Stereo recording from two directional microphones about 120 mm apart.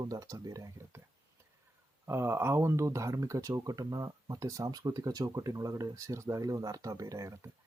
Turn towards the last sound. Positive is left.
turn(degrees=-25)  # may be behind; listen again after turning